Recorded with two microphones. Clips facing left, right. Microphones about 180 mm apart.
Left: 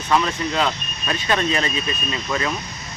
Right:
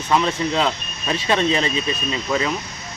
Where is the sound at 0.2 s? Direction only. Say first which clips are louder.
Right 2 dB; 30° right (ahead or behind).